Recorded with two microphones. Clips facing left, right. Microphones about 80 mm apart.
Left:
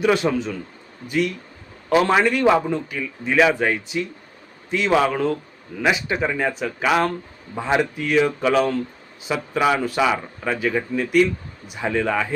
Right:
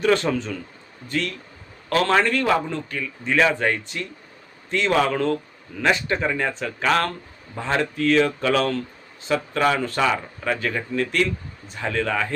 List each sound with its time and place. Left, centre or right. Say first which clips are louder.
0.0 s a man's voice: left 1 dB; centre